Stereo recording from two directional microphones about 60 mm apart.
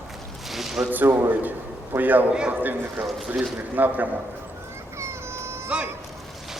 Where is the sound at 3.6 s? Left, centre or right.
Right.